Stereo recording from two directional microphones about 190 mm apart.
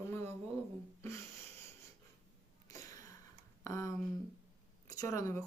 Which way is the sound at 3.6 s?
15° left (ahead or behind).